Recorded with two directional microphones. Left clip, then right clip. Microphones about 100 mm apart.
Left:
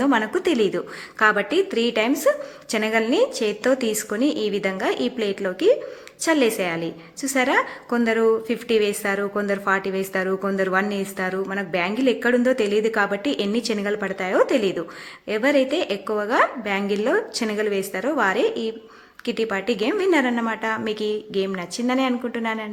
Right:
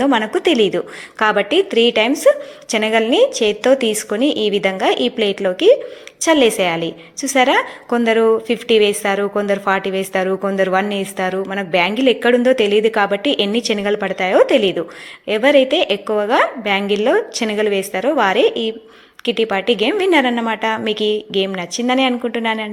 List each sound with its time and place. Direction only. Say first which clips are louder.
0.0 s a woman's voice: right 5 dB; 20° right (ahead or behind)
1.5 s speech: right 7 dB; 45° left (ahead or behind)
1.9 s a woman's voice: right 7 dB; 20° right (ahead or behind)
4.3 s speech: right 8 dB; 45° left (ahead or behind)
4.6 s a woman's voice: right 7 dB; 30° right (ahead or behind)